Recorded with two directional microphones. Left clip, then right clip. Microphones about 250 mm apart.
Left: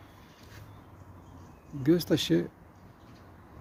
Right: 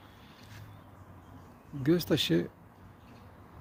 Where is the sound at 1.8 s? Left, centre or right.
Centre.